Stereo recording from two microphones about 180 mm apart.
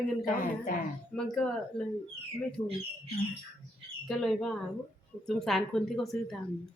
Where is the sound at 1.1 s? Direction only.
5° left (ahead or behind).